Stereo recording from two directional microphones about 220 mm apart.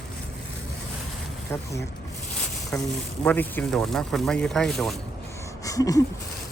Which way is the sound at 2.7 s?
15° left (ahead or behind).